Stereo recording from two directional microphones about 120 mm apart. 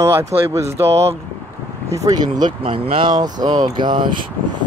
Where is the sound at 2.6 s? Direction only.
50° right (ahead or behind).